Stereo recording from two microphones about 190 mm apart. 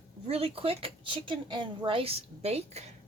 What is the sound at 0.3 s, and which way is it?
Speech, 30° right (ahead or behind).